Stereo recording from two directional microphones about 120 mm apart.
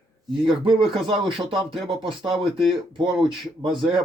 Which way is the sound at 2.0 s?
45° right (ahead or behind).